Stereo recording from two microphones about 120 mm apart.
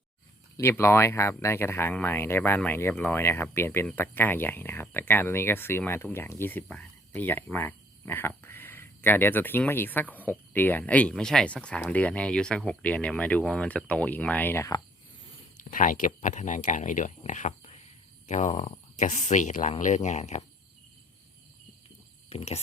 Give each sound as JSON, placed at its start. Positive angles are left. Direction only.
{"t": 0.5, "sound": "speech", "side_deg": 20}
{"t": 15.5, "sound": "speech", "side_deg": 90}
{"t": 19.8, "sound": "speech", "side_deg": 80}
{"t": 22.3, "sound": "speech", "side_deg": 60}